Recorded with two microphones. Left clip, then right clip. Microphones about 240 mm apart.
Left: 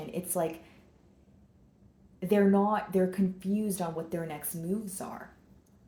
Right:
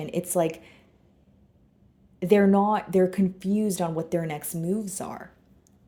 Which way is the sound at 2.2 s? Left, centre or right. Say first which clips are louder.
Right 6 dB; right.